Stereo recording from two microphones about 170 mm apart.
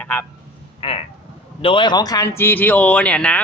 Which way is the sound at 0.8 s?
30° left (ahead or behind).